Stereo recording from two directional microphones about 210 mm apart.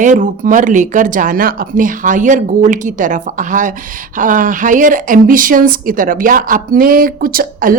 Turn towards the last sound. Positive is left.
turn(degrees=-45)  # may be behind; listen again after turning